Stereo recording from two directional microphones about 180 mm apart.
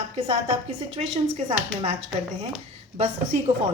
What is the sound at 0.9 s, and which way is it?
A woman's voice, 35° right (ahead or behind).